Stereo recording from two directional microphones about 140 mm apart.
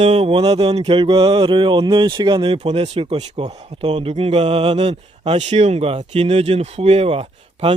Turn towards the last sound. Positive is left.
turn(degrees=-45)  # may be behind; listen again after turning